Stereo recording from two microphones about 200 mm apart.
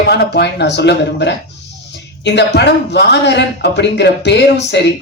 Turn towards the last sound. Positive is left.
turn(degrees=60)  # may be behind; listen again after turning